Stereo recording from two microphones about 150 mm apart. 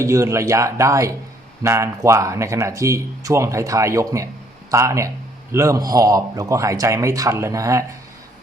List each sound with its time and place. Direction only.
0.0 s a man's voice: 20° right (ahead or behind)